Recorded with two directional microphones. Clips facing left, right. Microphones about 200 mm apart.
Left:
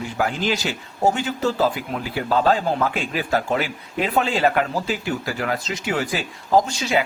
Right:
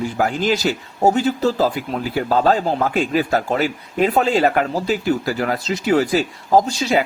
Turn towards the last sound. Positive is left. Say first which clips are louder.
# right 3 dB
turn(degrees=-40)  # may be behind; listen again after turning